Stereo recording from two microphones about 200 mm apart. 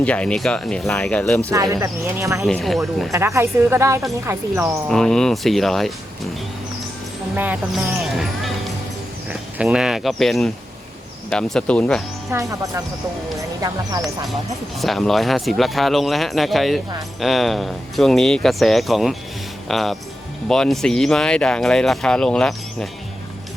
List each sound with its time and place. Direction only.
0.0 s speech: 5° left (ahead or behind)
1.5 s speech: 15° right (ahead or behind)
2.5 s speech: centre (ahead or behind)
3.1 s speech: 15° right (ahead or behind)
4.9 s speech: centre (ahead or behind)
7.3 s speech: 10° right (ahead or behind)
12.3 s speech: 15° right (ahead or behind)
14.8 s speech: centre (ahead or behind)